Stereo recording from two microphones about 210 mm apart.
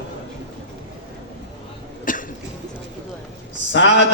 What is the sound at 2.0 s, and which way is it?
Cough, 40° left (ahead or behind).